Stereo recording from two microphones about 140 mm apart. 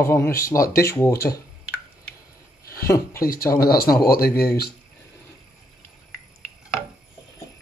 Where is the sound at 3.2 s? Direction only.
90° left.